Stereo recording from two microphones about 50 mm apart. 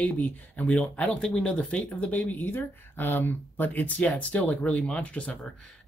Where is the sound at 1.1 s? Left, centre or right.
Centre.